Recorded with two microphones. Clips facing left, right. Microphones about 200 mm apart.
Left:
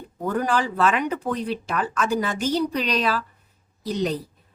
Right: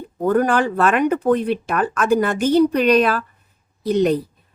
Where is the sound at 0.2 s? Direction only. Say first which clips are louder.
Right 7 dB; 55° right (ahead or behind).